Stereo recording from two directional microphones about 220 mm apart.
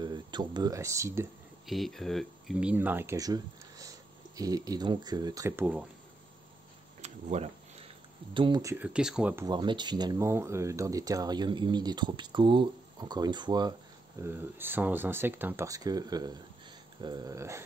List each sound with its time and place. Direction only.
0.0 s speech: 20° right (ahead or behind)
1.7 s speech: centre (ahead or behind)
7.0 s a sound: 30° right (ahead or behind)
8.3 s speech: 20° right (ahead or behind)